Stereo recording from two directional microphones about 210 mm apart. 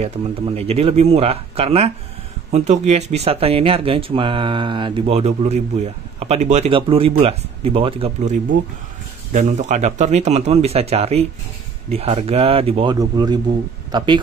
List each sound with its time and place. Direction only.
0.6 s speech: 30° right (ahead or behind)